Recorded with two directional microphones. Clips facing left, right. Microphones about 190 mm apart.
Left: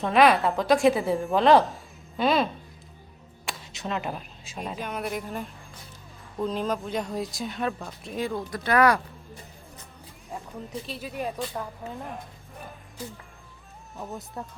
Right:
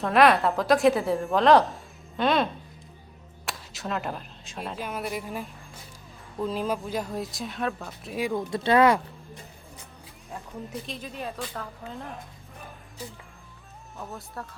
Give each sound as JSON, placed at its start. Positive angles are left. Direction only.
{"t": 0.0, "sound": "a woman's voice", "side_deg": 0}
{"t": 3.4, "sound": "a sound", "side_deg": 0}
{"t": 4.8, "sound": "a woman's voice", "side_deg": 0}
{"t": 8.4, "sound": "speech", "side_deg": -25}
{"t": 10.3, "sound": "a woman's voice", "side_deg": 0}
{"t": 13.9, "sound": "speech", "side_deg": 15}